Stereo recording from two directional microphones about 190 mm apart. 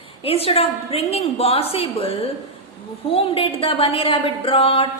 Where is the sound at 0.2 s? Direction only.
30° left (ahead or behind).